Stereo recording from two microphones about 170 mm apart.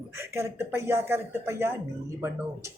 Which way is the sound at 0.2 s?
15° right (ahead or behind).